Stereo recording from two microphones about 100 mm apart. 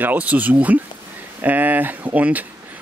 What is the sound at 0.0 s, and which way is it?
Speech, 15° right (ahead or behind).